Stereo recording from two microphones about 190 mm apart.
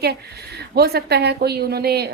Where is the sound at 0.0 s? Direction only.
60° right (ahead or behind).